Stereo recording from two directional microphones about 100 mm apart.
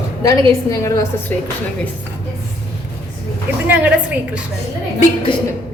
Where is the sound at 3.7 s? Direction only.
15° right (ahead or behind).